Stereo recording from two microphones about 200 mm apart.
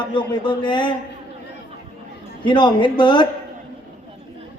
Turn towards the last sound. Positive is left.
turn(degrees=25)  # may be behind; listen again after turning